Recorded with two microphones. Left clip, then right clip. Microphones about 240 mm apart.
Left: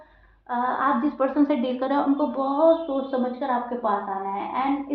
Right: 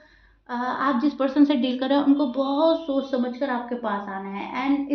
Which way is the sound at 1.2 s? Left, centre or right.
Right.